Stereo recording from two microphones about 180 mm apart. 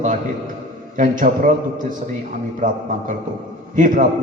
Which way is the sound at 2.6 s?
45° right (ahead or behind).